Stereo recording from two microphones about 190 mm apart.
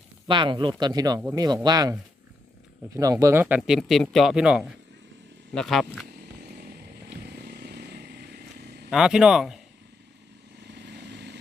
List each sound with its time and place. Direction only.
0.3 s speech: 25° right (ahead or behind); by 5.8 s centre (ahead or behind)
6.6 s vehicle: 55° right (ahead or behind)
8.9 s speech: 5° right (ahead or behind)
10.7 s vehicle: 65° right (ahead or behind)